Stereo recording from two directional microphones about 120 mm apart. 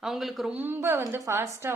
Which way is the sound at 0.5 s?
15° right (ahead or behind).